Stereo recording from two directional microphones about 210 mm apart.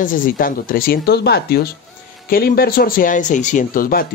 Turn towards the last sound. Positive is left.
turn(degrees=45)  # may be behind; listen again after turning